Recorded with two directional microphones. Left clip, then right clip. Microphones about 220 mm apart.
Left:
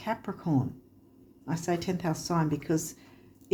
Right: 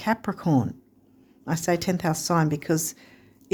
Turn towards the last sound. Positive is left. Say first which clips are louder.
# right 4 dB
turn(degrees=-50)  # may be behind; listen again after turning